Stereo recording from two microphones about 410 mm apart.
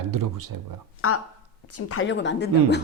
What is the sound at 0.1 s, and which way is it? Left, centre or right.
Speech, right.